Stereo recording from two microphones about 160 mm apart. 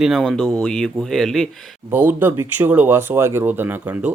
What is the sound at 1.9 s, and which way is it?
Speech, 10° right (ahead or behind).